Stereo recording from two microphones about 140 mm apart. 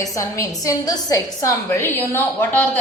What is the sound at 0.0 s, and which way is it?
A woman's voice, 25° left (ahead or behind).